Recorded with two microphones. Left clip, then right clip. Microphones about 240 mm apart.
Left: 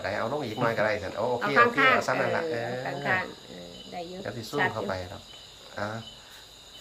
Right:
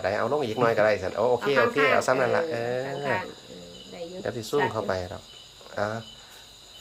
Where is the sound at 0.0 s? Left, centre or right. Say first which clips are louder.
Right 4 dB; right.